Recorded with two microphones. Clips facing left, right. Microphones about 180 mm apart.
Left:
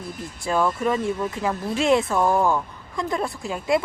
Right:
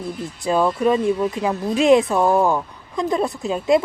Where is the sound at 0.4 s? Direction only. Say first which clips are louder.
Right 4 dB; 20° right (ahead or behind).